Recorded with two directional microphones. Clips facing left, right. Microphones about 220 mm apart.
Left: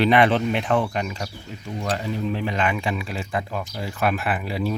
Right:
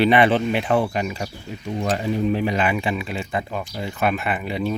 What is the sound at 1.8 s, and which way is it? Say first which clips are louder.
Speech: right 4 dB; 20° right (ahead or behind).